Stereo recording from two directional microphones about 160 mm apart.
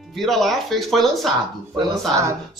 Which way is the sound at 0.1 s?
Centre (ahead or behind).